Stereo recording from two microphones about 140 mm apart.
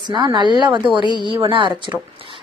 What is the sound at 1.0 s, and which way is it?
Speech, 35° left (ahead or behind).